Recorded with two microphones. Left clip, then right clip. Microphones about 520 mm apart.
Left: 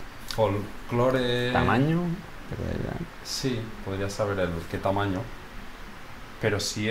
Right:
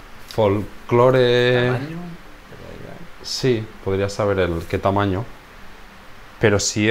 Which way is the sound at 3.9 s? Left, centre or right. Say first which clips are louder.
Right 9 dB; right.